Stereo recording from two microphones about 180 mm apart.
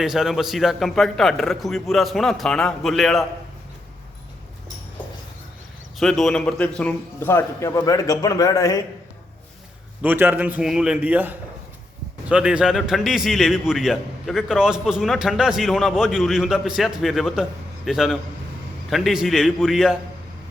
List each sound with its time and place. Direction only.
0.0 s a man's voice: centre (ahead or behind)
6.0 s a man's voice: centre (ahead or behind); by 8.8 s 20° left (ahead or behind)
10.0 s a man's voice: 10° right (ahead or behind)